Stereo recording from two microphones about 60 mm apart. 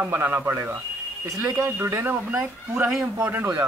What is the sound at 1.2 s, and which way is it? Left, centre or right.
Speech, right.